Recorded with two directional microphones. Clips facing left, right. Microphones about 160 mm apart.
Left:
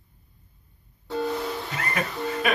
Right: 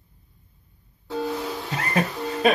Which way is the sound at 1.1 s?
5° right (ahead or behind).